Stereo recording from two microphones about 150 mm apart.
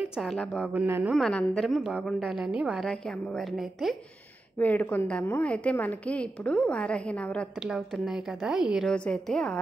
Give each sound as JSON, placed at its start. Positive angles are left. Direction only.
{"t": 0.2, "sound": "a woman's voice", "side_deg": 0}
{"t": 0.8, "sound": "a woman's voice", "side_deg": -15}
{"t": 1.1, "sound": "a woman's voice", "side_deg": 0}
{"t": 4.6, "sound": "a woman's voice", "side_deg": 10}
{"t": 7.6, "sound": "a woman's voice", "side_deg": -5}
{"t": 8.8, "sound": "a woman's voice", "side_deg": 5}